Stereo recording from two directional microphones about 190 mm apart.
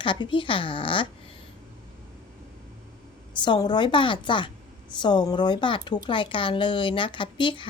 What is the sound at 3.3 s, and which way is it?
Speech, 25° left (ahead or behind).